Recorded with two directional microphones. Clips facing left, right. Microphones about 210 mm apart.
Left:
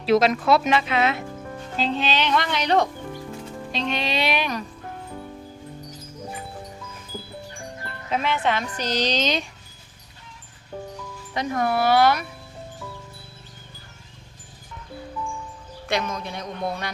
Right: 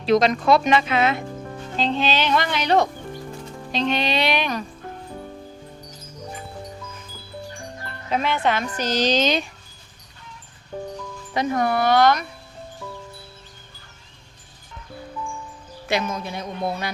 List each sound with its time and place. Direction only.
0.0 s speech: 5° left (ahead or behind)
8.1 s speech: centre (ahead or behind)
8.9 s speech: 50° right (ahead or behind)
11.6 s speech: 5° left (ahead or behind)
15.9 s speech: 5° right (ahead or behind)